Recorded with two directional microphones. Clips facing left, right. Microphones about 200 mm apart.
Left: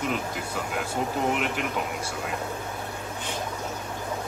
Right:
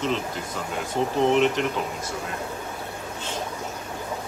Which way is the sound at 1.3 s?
5° left (ahead or behind).